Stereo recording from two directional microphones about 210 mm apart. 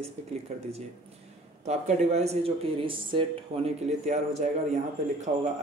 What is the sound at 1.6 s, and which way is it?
A man's voice, 30° right (ahead or behind).